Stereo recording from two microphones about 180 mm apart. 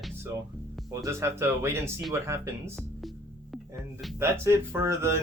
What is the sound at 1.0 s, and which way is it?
Speech, 15° right (ahead or behind).